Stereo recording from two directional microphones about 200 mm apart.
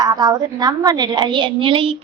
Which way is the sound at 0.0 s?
20° right (ahead or behind).